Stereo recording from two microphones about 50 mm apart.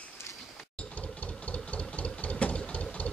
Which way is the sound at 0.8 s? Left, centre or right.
Left.